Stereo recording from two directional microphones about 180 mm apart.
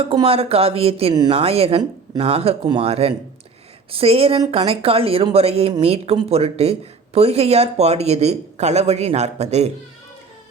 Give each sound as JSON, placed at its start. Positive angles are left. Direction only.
{"t": 0.0, "sound": "speech", "side_deg": -35}